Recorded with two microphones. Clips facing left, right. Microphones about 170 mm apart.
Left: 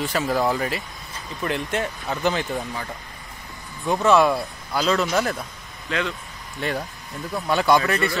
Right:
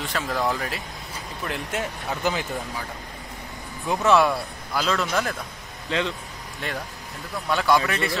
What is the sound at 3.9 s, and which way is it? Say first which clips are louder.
A man's voice: left 2 dB; centre (ahead or behind).